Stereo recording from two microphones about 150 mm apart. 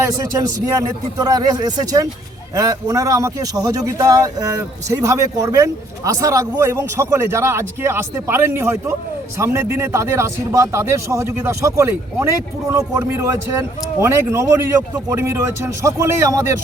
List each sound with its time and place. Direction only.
0.0 s a man's voice: 20° right (ahead or behind)